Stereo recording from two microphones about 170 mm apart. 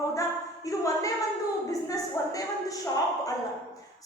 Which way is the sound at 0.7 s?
20° left (ahead or behind).